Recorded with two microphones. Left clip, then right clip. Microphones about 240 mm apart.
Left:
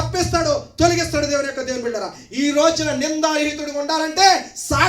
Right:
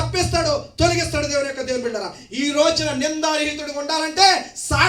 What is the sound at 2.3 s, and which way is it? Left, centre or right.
A man's voice, left.